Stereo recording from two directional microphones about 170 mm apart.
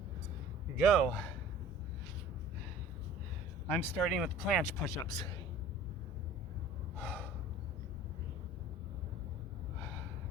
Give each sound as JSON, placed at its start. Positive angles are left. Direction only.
{"t": 0.8, "sound": "speech", "side_deg": 0}
{"t": 3.7, "sound": "speech", "side_deg": 10}
{"t": 4.9, "sound": "speech", "side_deg": 25}
{"t": 6.9, "sound": "gasp", "side_deg": 10}